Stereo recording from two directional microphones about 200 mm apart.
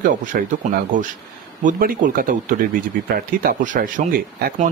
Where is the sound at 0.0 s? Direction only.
40° right (ahead or behind).